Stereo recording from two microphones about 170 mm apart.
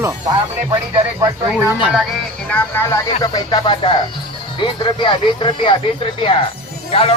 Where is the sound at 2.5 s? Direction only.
15° left (ahead or behind).